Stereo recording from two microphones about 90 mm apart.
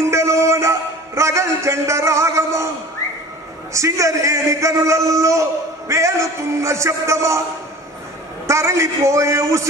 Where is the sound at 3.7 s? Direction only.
35° right (ahead or behind).